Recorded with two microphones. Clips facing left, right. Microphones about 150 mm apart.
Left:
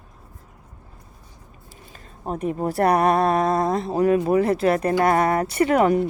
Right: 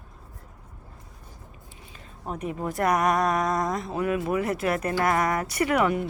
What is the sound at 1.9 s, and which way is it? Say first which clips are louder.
Speech: left 5 dB; 35° left (ahead or behind).